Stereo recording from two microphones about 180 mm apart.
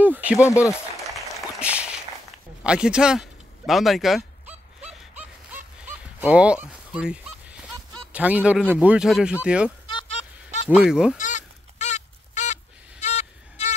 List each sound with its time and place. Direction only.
0.0 s speech: 10° right (ahead or behind)
0.5 s speech: 15° left (ahead or behind)
1.1 s a sound: 5° right (ahead or behind)
8.1 s speech: 10° right (ahead or behind)
10.7 s speech: 5° right (ahead or behind)
11.1 s goose: 45° left (ahead or behind)
13.0 s music: 40° left (ahead or behind)